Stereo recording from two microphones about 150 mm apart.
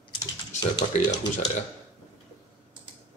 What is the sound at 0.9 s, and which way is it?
Speech, 55° left (ahead or behind).